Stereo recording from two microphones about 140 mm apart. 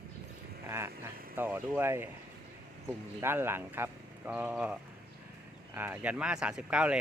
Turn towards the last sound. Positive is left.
turn(degrees=-10)  # may be behind; listen again after turning